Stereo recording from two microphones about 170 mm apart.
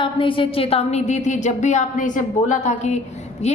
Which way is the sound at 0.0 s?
30° left (ahead or behind).